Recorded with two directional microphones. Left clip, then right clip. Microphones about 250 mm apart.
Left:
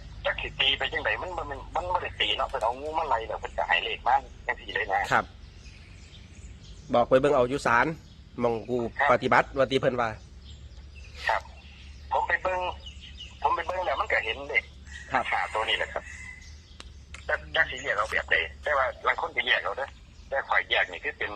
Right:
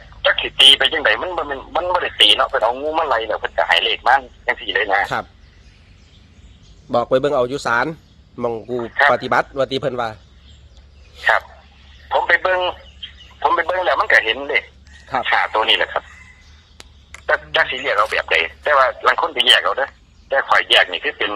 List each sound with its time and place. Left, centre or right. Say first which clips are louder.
0.2 s a man's voice: right 15 dB; right
6.9 s speech: right 5 dB; centre
11.2 s speech: right 11 dB; centre
12.0 s telephone: right 11 dB; right
13.4 s radio: right 10 dB; right
15.2 s a man's voice: right 14 dB; right